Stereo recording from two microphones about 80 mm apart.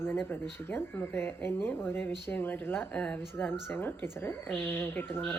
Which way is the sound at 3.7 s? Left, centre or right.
Left.